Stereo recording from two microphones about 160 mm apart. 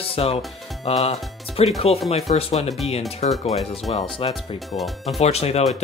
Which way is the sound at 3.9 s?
35° left (ahead or behind).